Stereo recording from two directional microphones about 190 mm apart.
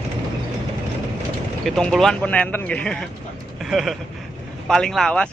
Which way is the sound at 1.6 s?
Centre (ahead or behind).